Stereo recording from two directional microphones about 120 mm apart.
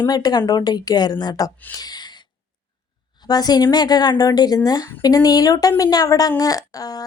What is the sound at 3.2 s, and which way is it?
A woman's voice, 35° left (ahead or behind).